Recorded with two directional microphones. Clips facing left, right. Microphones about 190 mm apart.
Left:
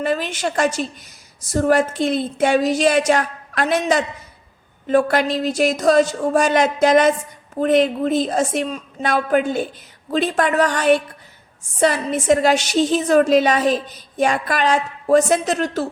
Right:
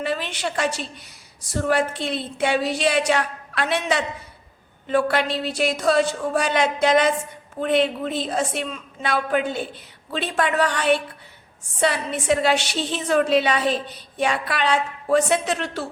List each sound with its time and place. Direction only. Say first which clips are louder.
0.0 s a woman's voice: left 5 dB; 45° left (ahead or behind)